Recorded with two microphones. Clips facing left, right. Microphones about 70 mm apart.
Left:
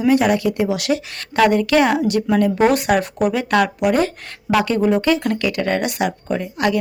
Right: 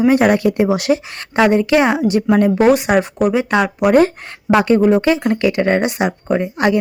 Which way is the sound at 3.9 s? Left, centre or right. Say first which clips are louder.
Right 6 dB; right.